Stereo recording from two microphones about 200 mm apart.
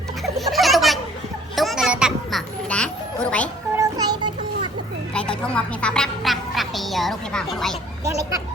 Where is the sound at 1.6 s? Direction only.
Centre (ahead or behind).